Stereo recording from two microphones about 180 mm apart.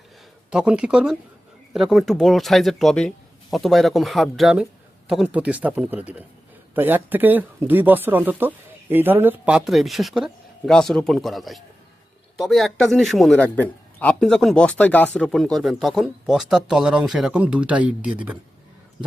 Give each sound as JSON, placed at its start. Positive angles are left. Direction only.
{"t": 0.5, "sound": "a man's voice", "side_deg": -5}